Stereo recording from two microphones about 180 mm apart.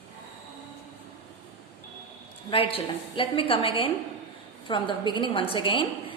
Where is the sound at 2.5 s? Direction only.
30° left (ahead or behind).